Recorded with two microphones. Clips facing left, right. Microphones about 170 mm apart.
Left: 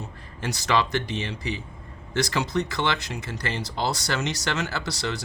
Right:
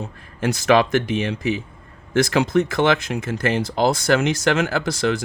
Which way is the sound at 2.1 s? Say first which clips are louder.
Right 8 dB; 50° right (ahead or behind).